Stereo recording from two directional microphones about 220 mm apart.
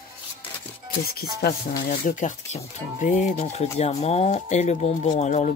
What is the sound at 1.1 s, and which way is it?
Speech, 45° left (ahead or behind).